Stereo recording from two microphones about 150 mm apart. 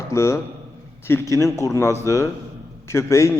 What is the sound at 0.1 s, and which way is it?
A man's voice, 20° left (ahead or behind).